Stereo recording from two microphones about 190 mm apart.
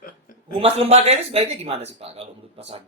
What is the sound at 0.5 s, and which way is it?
Speech, 30° right (ahead or behind).